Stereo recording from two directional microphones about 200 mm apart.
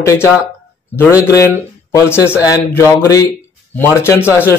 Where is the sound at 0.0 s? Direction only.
15° left (ahead or behind).